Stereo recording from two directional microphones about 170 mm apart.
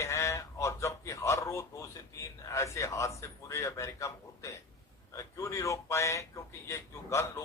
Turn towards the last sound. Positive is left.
turn(degrees=15)  # may be behind; listen again after turning